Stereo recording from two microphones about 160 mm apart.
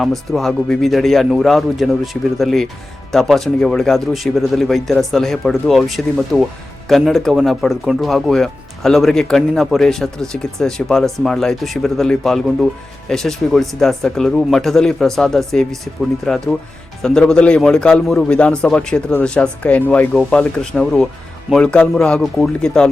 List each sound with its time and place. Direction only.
0.0 s speech: centre (ahead or behind)